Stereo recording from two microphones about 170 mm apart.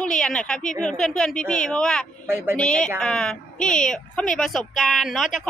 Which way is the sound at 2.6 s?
5° left (ahead or behind).